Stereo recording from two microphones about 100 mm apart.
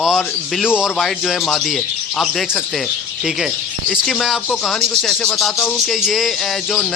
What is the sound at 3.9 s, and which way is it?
Speech, centre (ahead or behind).